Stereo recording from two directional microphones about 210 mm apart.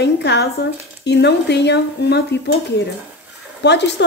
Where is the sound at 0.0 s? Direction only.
55° left (ahead or behind).